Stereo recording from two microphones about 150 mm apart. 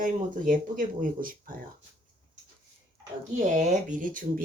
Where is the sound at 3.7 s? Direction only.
60° right (ahead or behind).